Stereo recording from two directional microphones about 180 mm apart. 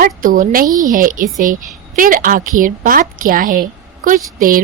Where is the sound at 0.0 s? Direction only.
50° right (ahead or behind).